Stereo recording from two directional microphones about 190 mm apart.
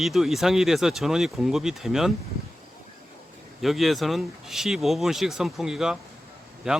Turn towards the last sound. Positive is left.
turn(degrees=-5)  # may be behind; listen again after turning